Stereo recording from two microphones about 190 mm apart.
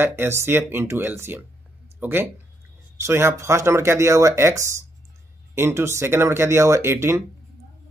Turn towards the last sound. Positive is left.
turn(degrees=-15)  # may be behind; listen again after turning